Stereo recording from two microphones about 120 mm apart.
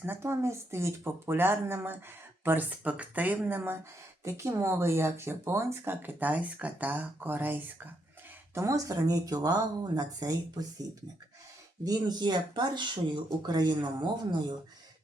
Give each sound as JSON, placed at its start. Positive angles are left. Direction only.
{"t": 0.0, "sound": "speech", "side_deg": -20}
{"t": 8.5, "sound": "speech", "side_deg": -30}
{"t": 11.9, "sound": "speech", "side_deg": -35}